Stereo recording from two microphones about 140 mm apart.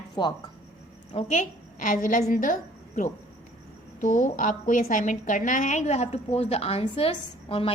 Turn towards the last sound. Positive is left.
turn(degrees=40)  # may be behind; listen again after turning